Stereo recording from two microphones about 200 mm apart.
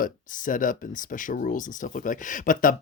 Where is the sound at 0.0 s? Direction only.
40° left (ahead or behind).